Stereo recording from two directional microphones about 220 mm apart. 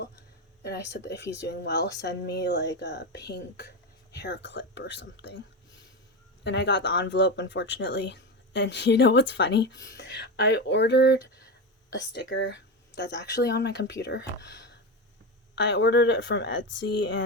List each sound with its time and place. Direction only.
0.6 s speech: 50° left (ahead or behind)
6.4 s speech: 55° left (ahead or behind)